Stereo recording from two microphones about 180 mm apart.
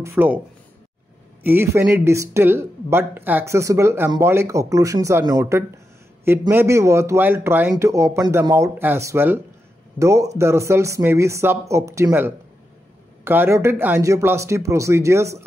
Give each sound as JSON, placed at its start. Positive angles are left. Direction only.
{"t": 0.0, "sound": "speech", "side_deg": -15}
{"t": 1.4, "sound": "speech", "side_deg": -10}